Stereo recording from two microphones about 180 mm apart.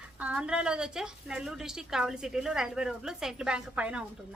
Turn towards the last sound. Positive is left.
turn(degrees=-5)  # may be behind; listen again after turning